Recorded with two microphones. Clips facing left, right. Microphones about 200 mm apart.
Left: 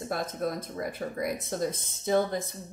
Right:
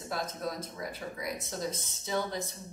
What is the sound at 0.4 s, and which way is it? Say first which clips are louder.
A woman's voice: left 5 dB; 55° left (ahead or behind).